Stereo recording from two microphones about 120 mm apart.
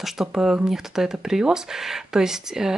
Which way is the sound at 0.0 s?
5° right (ahead or behind).